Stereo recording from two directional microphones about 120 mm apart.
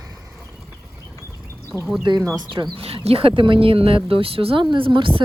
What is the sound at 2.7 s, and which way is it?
Speech, 55° right (ahead or behind).